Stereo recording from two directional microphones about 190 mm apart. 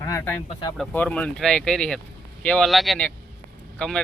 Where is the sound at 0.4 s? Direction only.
20° left (ahead or behind).